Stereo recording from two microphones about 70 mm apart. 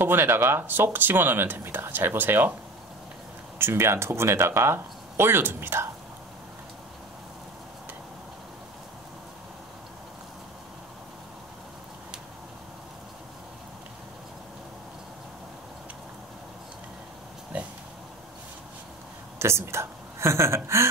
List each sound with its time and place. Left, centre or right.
0.0 s speech: right
3.5 s speech: right
17.5 s a sound: centre
19.3 s a woman's voice: right